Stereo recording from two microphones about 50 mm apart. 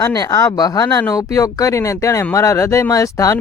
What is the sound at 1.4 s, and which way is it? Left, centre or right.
Speech, left.